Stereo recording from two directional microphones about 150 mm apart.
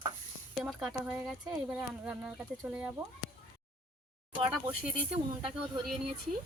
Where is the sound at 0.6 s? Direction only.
Centre (ahead or behind).